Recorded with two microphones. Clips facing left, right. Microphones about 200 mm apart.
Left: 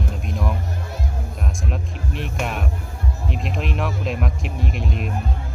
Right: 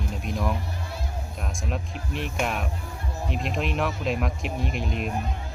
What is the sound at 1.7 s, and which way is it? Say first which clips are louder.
Speech: left 2 dB; centre (ahead or behind).